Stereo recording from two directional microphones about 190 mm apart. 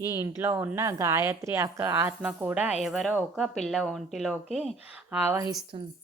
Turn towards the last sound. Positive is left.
turn(degrees=-15)  # may be behind; listen again after turning